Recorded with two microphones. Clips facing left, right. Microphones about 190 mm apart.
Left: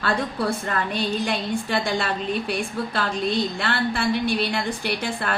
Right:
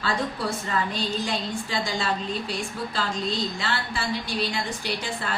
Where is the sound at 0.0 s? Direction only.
60° left (ahead or behind).